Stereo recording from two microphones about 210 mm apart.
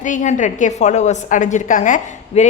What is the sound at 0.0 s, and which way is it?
A woman's voice, 35° left (ahead or behind).